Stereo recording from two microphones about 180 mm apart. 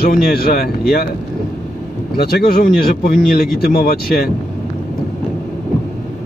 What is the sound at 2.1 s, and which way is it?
Speech, 55° left (ahead or behind).